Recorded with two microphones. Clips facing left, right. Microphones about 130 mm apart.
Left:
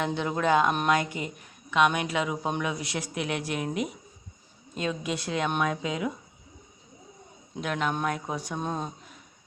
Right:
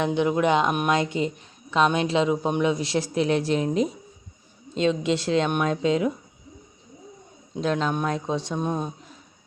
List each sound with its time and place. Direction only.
0.0 s speech: 20° right (ahead or behind)
7.5 s speech: 25° right (ahead or behind)